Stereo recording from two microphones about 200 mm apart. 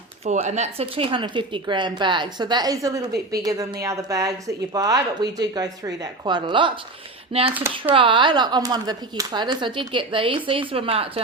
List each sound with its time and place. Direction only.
0.3 s a woman's voice: 35° right (ahead or behind)